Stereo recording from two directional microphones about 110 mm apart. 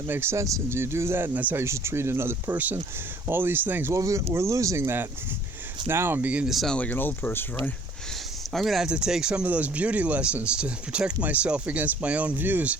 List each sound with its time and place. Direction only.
0.1 s speech: 20° right (ahead or behind)
6.5 s speech: centre (ahead or behind)
6.7 s speech: 15° left (ahead or behind)
8.5 s speech: centre (ahead or behind); by 12.7 s 15° right (ahead or behind)